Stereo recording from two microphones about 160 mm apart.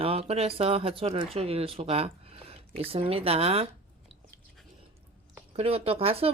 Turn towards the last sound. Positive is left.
turn(degrees=-35)  # may be behind; listen again after turning